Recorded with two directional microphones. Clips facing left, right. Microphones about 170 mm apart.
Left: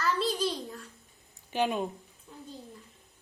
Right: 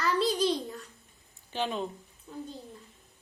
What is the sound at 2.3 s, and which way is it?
Speech, centre (ahead or behind).